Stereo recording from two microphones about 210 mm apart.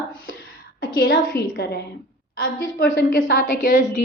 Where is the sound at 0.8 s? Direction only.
45° left (ahead or behind).